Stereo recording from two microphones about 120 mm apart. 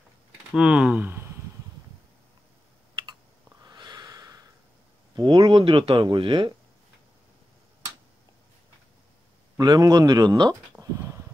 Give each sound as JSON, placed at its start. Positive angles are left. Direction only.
{"t": 0.5, "sound": "speech", "side_deg": -10}
{"t": 3.6, "sound": "a sound", "side_deg": -35}
{"t": 5.1, "sound": "speech", "side_deg": -35}
{"t": 9.6, "sound": "speech", "side_deg": -30}